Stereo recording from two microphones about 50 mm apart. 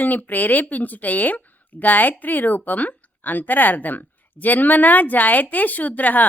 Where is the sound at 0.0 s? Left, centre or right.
Left.